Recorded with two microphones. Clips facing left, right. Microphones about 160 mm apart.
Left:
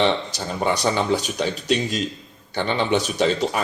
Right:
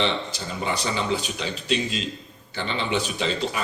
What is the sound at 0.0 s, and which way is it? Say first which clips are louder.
Speech: left 5 dB; 45° left (ahead or behind).